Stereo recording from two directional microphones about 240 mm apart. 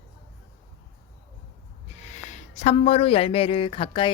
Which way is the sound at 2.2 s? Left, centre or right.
Left.